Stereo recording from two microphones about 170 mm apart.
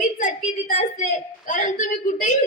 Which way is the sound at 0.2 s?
50° left (ahead or behind).